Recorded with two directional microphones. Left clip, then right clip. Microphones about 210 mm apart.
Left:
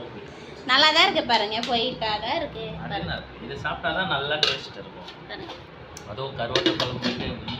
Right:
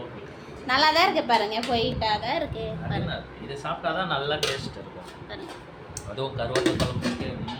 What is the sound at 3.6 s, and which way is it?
Speech, 35° right (ahead or behind).